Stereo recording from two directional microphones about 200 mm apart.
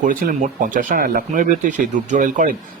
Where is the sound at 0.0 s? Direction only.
40° right (ahead or behind).